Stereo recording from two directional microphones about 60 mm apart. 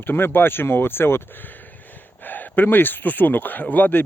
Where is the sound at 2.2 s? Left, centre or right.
Left.